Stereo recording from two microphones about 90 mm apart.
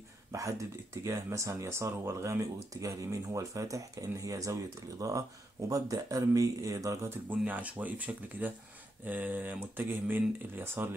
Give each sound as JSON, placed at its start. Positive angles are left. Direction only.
{"t": 0.3, "sound": "speech", "side_deg": -35}
{"t": 7.1, "sound": "speech", "side_deg": -20}